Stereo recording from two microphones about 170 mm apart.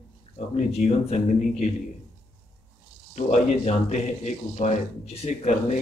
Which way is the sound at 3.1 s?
45° left (ahead or behind).